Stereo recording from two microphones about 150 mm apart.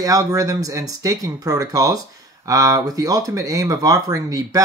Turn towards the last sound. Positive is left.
turn(degrees=-25)  # may be behind; listen again after turning